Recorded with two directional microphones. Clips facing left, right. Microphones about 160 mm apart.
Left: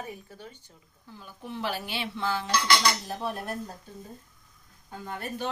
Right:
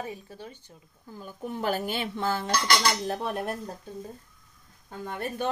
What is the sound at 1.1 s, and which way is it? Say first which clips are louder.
Speech: right 3 dB; 45° right (ahead or behind).